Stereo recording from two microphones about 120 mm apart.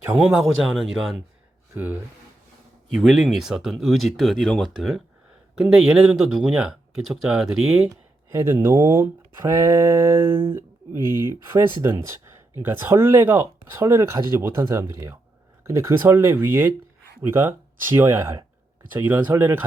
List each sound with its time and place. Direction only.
0.0 s speech: 10° right (ahead or behind)
1.7 s speech: 15° right (ahead or behind)
2.9 s speech: centre (ahead or behind)
8.3 s speech: 20° right (ahead or behind)